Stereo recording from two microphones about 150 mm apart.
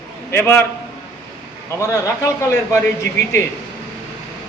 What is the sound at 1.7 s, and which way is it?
A man's voice, 20° left (ahead or behind).